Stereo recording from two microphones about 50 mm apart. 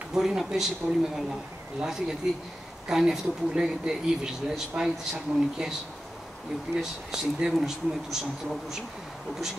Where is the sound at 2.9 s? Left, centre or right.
Centre.